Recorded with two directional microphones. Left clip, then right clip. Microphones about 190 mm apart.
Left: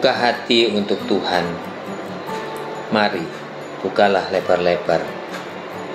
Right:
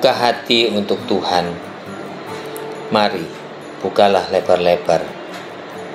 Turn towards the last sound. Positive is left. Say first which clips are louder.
# right 3 dB
turn(degrees=-30)  # may be behind; listen again after turning